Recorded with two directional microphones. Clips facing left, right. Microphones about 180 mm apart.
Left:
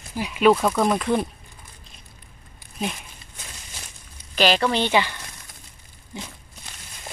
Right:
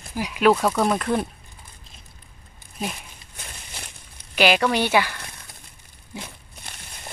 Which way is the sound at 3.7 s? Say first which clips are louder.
Right 4 dB; 60° right (ahead or behind).